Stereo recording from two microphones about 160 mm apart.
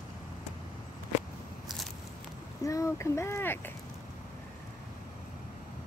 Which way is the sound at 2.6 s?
20° left (ahead or behind).